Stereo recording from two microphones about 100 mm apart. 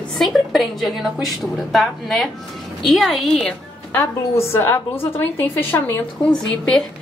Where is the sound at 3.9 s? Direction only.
25° left (ahead or behind).